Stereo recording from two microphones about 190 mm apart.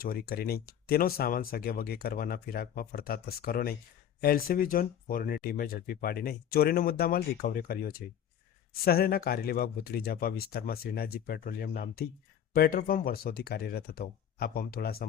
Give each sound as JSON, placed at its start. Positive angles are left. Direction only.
{"t": 0.0, "sound": "speech", "side_deg": 50}